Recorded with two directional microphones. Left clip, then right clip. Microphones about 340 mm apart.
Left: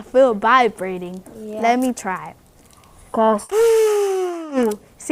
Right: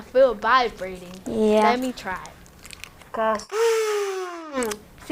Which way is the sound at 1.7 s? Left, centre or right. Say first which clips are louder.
Left 5 dB; left.